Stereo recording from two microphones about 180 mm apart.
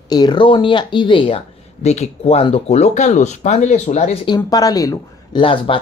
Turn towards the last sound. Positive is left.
turn(degrees=30)  # may be behind; listen again after turning